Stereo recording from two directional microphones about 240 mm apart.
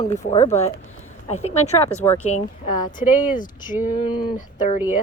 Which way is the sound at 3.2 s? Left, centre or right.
Left.